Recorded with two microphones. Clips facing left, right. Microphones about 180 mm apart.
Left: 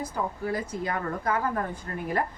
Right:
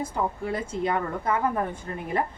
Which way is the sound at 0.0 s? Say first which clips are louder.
Right 2 dB; 25° right (ahead or behind).